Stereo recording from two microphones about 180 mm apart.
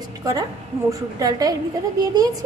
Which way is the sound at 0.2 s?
20° right (ahead or behind).